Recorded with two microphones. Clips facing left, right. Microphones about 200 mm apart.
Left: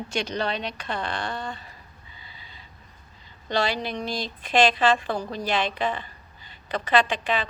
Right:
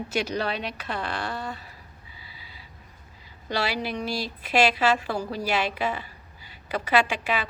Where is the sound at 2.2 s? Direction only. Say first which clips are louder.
Left 1 dB; 5° right (ahead or behind).